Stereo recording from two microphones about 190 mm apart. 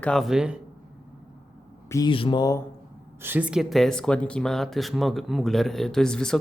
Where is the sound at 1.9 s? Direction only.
15° left (ahead or behind).